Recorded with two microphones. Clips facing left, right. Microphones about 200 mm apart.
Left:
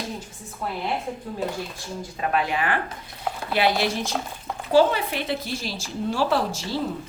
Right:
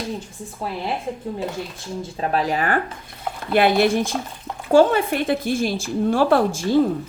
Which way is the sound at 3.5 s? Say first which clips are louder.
Right 6 dB; 55° right (ahead or behind).